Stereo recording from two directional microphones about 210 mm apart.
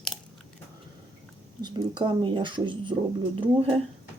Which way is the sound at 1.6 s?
20° right (ahead or behind).